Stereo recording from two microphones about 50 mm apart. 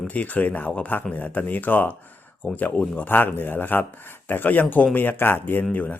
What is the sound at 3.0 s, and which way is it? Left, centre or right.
Speech, left.